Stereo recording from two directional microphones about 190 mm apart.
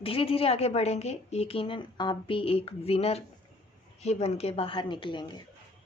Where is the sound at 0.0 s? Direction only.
30° left (ahead or behind).